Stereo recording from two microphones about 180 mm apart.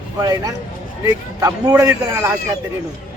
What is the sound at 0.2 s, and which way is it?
A man's voice, 20° right (ahead or behind).